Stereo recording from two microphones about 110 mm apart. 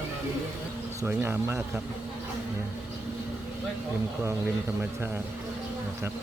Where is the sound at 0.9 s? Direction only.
20° right (ahead or behind).